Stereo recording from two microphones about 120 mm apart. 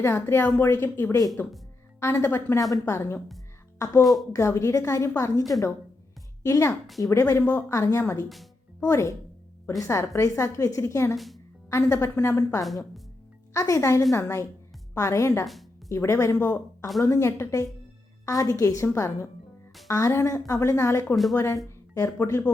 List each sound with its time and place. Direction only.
0.0 s a woman's voice: 20° left (ahead or behind)
4.0 s speech: centre (ahead or behind)
4.3 s a woman's voice: 25° left (ahead or behind)
12.6 s speech: centre (ahead or behind)
13.5 s a woman's voice: 25° left (ahead or behind)